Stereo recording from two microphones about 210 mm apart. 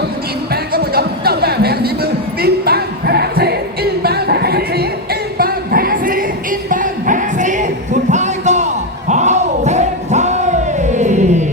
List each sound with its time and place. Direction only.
0.5 s music: 45° right (ahead or behind)
4.0 s a sound: 50° right (ahead or behind)
6.7 s music: 35° right (ahead or behind)